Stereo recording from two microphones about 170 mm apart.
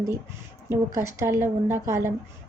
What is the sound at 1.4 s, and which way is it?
Speech, 15° right (ahead or behind).